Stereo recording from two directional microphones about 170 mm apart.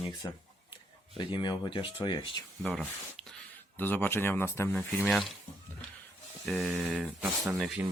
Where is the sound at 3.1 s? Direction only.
5° left (ahead or behind).